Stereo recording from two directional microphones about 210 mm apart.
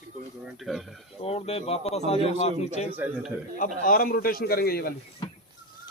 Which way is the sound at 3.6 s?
40° left (ahead or behind).